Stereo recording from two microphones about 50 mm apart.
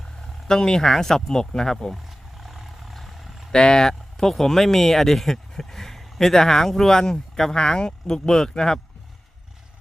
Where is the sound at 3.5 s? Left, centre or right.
Centre.